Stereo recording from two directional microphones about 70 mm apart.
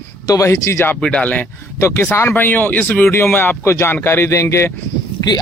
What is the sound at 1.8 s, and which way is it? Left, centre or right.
Speech, left.